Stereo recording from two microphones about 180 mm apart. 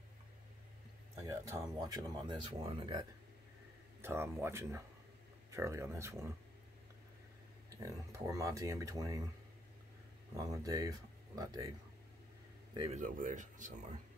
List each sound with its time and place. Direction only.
1.2 s speech: 20° right (ahead or behind)
4.0 s speech: 15° right (ahead or behind)
7.7 s speech: 20° right (ahead or behind)
10.3 s speech: 20° right (ahead or behind)
12.9 s speech: 45° right (ahead or behind)